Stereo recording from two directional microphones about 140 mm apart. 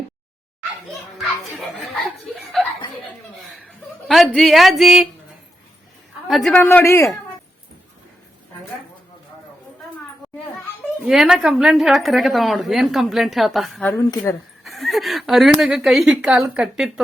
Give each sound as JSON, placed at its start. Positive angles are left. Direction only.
{"t": 1.2, "sound": "a woman's voice", "side_deg": 0}
{"t": 4.1, "sound": "a woman's voice", "side_deg": 0}
{"t": 6.2, "sound": "a man's voice", "side_deg": 0}
{"t": 6.6, "sound": "a man's voice", "side_deg": 15}
{"t": 11.0, "sound": "a woman's voice", "side_deg": -5}
{"t": 14.3, "sound": "a man's voice", "side_deg": 20}
{"t": 14.6, "sound": "a woman's voice", "side_deg": 0}